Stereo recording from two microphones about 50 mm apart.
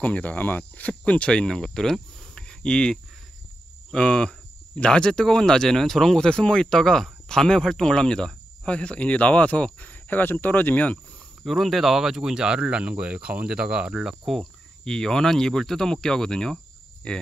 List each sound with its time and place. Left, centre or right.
0.0 s speech: left
1.5 s speech: centre; by 11.0 s left
11.4 s speech: centre
14.4 s speech: centre